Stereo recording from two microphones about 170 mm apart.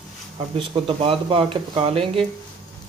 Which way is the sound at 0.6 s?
35° right (ahead or behind).